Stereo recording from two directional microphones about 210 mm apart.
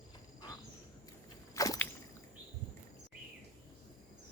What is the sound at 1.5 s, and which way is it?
Whip, 15° left (ahead or behind).